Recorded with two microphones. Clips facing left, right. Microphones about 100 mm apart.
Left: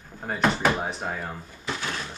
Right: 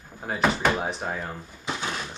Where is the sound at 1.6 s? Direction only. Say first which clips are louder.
Right 1 dB; 20° right (ahead or behind).